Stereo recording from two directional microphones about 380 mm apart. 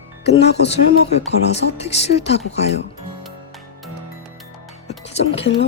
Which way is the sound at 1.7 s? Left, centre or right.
Centre.